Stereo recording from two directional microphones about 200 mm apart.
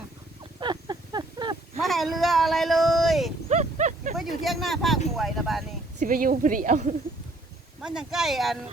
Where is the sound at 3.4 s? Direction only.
35° right (ahead or behind).